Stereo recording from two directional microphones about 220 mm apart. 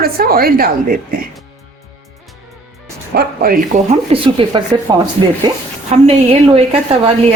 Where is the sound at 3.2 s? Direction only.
40° right (ahead or behind).